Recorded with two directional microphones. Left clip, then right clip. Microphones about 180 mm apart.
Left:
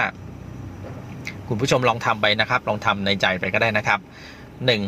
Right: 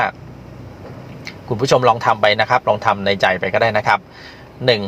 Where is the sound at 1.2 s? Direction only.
15° right (ahead or behind).